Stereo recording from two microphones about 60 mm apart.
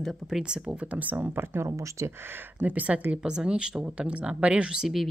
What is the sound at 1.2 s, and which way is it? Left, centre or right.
Speech, right.